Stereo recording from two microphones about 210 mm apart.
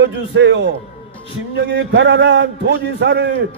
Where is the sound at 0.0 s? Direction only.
60° right (ahead or behind).